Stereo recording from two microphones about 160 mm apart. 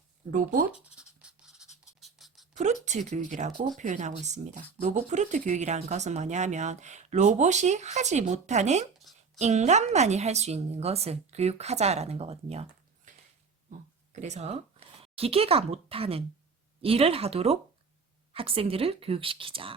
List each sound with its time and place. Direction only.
0.3 s speech: 60° right (ahead or behind)
0.7 s writing: 5° right (ahead or behind)
2.8 s speech: 50° right (ahead or behind)
14.1 s speech: 45° right (ahead or behind)